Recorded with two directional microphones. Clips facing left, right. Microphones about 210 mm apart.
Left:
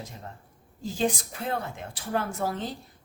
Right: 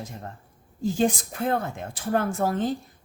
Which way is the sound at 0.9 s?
50° right (ahead or behind).